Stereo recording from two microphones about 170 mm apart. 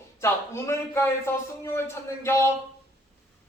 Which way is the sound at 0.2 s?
15° left (ahead or behind).